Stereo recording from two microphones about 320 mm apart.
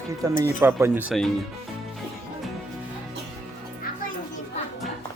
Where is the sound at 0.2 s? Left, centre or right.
Centre.